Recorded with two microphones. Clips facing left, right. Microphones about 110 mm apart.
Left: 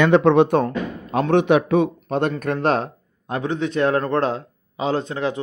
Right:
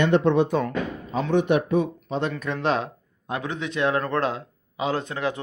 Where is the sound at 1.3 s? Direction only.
85° left.